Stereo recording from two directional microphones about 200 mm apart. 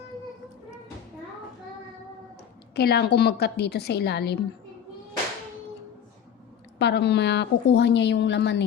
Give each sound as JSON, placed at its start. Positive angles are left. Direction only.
{"t": 2.7, "sound": "a woman's voice", "side_deg": 55}
{"t": 6.7, "sound": "a woman's voice", "side_deg": 55}